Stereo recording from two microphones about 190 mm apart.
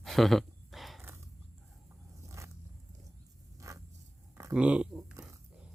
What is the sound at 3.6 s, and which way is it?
Vehicle, 15° right (ahead or behind).